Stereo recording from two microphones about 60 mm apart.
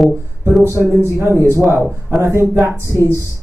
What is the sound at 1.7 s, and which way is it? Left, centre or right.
Speech, right.